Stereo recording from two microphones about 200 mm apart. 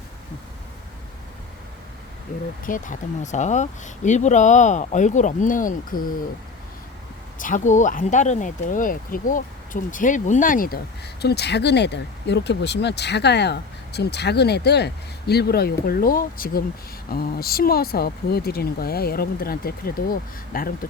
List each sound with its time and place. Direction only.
2.6 s speech: 40° left (ahead or behind)
7.3 s speech: 40° left (ahead or behind)
11.2 s speech: 55° left (ahead or behind)